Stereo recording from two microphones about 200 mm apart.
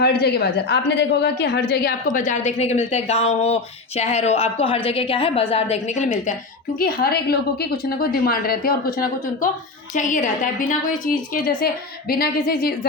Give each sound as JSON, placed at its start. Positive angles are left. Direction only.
{"t": 0.0, "sound": "a woman's voice", "side_deg": 55}
{"t": 2.1, "sound": "speech", "side_deg": 40}
{"t": 6.7, "sound": "a woman's voice", "side_deg": 50}